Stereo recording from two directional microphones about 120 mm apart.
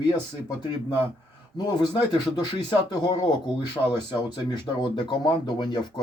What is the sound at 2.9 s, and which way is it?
Speech, 35° left (ahead or behind).